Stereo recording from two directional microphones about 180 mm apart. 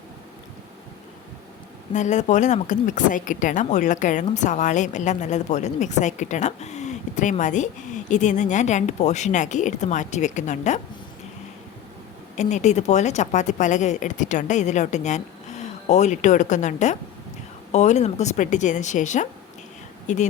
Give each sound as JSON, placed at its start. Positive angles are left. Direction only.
{"t": 1.9, "sound": "a woman's voice", "side_deg": 40}
{"t": 12.4, "sound": "a woman's voice", "side_deg": 40}